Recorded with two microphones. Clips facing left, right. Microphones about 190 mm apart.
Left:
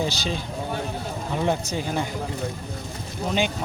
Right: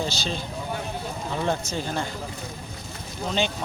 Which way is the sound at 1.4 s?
15° left (ahead or behind).